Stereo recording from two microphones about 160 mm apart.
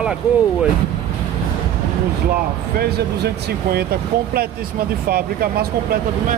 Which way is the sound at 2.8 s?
90° right.